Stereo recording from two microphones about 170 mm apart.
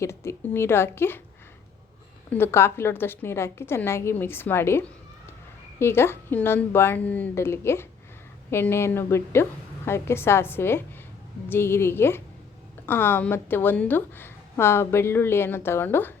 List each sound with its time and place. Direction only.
0.0 s a woman's voice: 15° left (ahead or behind)
2.3 s a woman's voice: 15° left (ahead or behind)